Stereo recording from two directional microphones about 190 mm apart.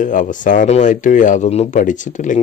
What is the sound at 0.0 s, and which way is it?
Speech, 40° left (ahead or behind).